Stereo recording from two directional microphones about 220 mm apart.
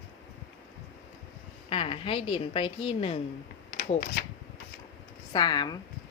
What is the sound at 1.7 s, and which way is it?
A woman's voice, 25° left (ahead or behind).